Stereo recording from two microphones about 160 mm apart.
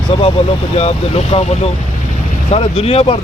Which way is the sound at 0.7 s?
40° left (ahead or behind).